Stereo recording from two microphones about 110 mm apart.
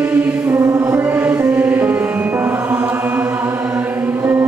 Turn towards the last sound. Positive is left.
turn(degrees=-15)  # may be behind; listen again after turning